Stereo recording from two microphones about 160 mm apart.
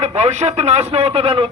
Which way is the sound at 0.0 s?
45° right (ahead or behind).